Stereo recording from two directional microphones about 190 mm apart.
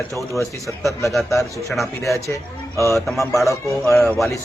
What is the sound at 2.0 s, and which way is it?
Speech, 15° left (ahead or behind).